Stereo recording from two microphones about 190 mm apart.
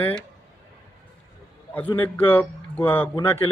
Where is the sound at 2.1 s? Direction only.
10° left (ahead or behind).